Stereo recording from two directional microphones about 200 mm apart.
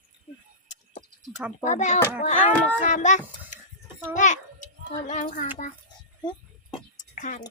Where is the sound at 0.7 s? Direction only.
35° left (ahead or behind).